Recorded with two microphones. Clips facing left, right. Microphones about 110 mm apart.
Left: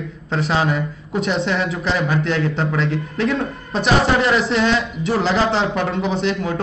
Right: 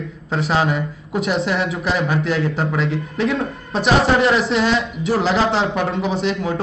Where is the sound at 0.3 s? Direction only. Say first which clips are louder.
Even; 5° right (ahead or behind).